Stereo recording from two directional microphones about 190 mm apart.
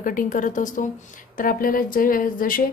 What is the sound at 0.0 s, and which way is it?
Speech, 45° left (ahead or behind).